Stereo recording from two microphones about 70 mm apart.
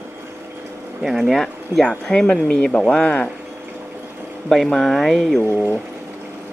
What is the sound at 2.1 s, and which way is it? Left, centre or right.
Speech, centre.